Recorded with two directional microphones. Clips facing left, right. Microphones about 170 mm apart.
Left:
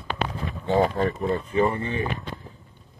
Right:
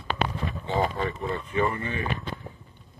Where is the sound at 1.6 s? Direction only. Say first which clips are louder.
Left 4 dB; 30° left (ahead or behind).